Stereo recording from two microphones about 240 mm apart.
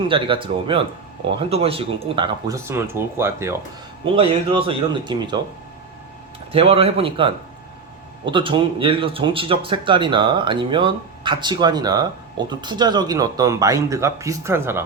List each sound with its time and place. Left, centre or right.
0.1 s speech: right
4.0 s speech: right
6.5 s speech: right